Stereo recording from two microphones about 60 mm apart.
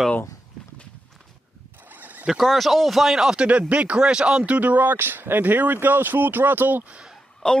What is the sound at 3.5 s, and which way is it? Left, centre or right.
Speech, right.